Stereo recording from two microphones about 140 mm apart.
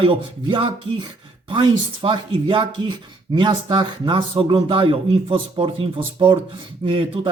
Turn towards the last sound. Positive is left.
turn(degrees=-40)  # may be behind; listen again after turning